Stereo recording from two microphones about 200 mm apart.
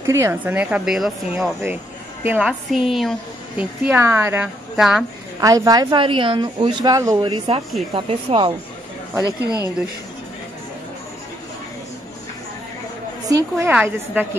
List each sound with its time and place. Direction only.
0.0 s a woman's voice: 15° right (ahead or behind)
5.4 s a woman's voice: 15° right (ahead or behind)
13.2 s a woman's voice: 15° right (ahead or behind)